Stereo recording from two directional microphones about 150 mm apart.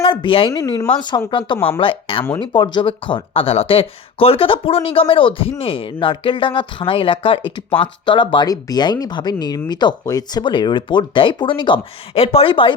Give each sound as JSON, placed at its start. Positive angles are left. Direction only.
{"t": 0.0, "sound": "speech", "side_deg": 35}
{"t": 0.5, "sound": "speech", "side_deg": 25}